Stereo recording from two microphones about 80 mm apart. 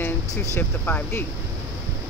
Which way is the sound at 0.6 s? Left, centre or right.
Left.